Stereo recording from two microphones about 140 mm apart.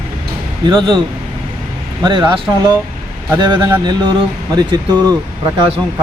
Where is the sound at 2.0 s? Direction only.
35° right (ahead or behind).